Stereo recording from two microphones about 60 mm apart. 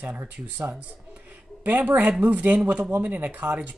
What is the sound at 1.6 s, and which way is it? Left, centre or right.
Speech, right.